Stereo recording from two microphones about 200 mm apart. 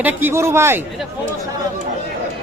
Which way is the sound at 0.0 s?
10° right (ahead or behind).